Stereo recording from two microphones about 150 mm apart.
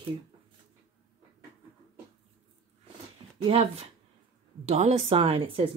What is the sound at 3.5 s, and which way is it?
A woman's voice, 40° right (ahead or behind).